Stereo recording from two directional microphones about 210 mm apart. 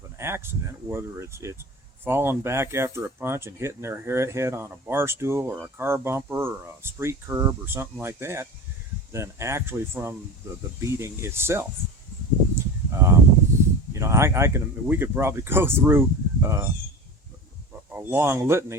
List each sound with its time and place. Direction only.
0.2 s speech: 10° right (ahead or behind)
12.5 s a sound: 10° right (ahead or behind)
13.9 s speech: 15° right (ahead or behind)
17.9 s speech: 10° right (ahead or behind)